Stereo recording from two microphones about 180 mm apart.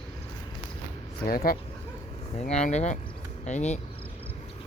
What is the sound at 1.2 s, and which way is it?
Speech, 55° left (ahead or behind).